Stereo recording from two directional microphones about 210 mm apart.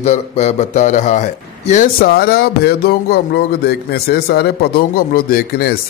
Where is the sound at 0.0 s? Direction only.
30° left (ahead or behind).